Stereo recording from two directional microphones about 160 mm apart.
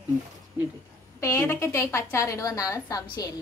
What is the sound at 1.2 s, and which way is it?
A woman's voice, 15° left (ahead or behind).